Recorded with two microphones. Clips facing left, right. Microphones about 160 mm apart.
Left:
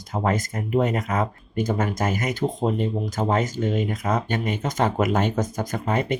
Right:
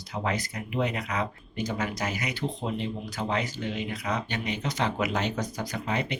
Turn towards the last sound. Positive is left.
turn(degrees=50)  # may be behind; listen again after turning